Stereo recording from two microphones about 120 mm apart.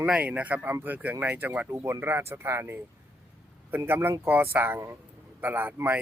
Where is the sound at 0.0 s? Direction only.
10° right (ahead or behind).